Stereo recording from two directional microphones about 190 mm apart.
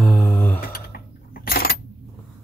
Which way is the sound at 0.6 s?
50° left (ahead or behind).